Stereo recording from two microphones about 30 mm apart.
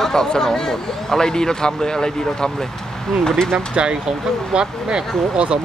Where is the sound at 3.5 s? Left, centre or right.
Right.